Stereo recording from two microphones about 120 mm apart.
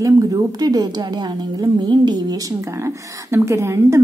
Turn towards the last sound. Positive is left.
turn(degrees=-20)  # may be behind; listen again after turning